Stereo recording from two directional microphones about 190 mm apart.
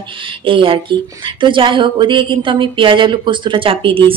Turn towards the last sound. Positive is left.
turn(degrees=-30)  # may be behind; listen again after turning